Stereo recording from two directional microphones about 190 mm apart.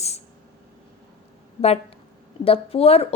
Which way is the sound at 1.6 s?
35° left (ahead or behind).